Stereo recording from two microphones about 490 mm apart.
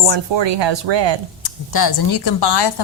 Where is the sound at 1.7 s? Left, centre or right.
Left.